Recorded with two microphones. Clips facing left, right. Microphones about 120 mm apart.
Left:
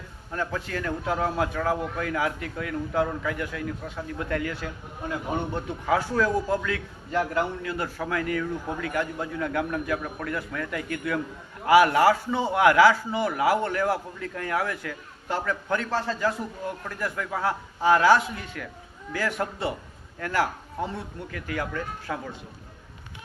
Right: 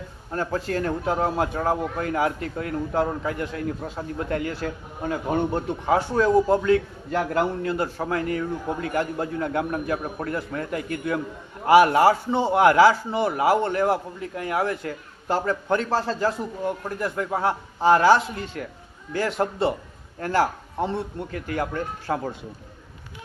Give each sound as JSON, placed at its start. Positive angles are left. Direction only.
{"t": 0.3, "sound": "a man's voice", "side_deg": -35}